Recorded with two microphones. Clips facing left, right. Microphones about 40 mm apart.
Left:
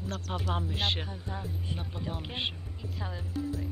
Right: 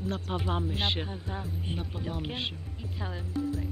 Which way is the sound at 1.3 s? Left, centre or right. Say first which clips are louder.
Left 1 dB; right.